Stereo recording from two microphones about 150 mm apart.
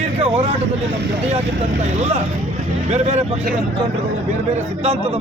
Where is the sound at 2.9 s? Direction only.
45° right (ahead or behind).